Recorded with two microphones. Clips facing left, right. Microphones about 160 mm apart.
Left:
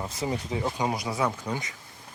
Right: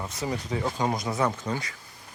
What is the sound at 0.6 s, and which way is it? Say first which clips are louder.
Speech: right 2 dB; 10° left (ahead or behind).